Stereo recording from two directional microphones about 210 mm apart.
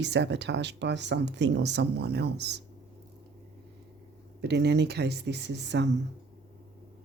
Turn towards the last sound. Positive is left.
turn(degrees=-55)  # may be behind; listen again after turning